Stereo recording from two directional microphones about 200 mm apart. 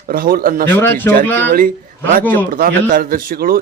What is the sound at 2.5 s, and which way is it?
A man's voice, 45° right (ahead or behind).